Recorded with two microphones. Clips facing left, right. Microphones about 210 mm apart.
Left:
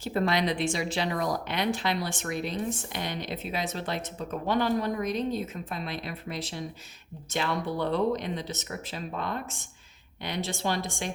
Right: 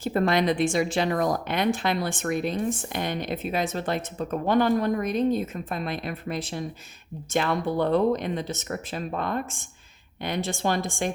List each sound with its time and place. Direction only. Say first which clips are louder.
0.0 s speech: right 4 dB; 50° right (ahead or behind)